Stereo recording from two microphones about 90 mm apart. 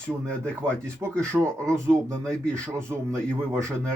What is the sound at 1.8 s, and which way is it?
Speech, 10° left (ahead or behind).